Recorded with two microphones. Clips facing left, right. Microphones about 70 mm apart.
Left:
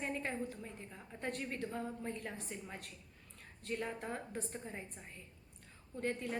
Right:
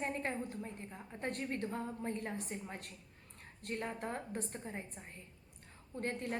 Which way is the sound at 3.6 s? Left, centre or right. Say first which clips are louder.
Even; right.